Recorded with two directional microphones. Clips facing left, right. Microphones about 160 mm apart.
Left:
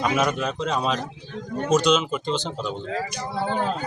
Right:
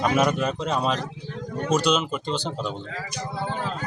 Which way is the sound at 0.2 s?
5° right (ahead or behind).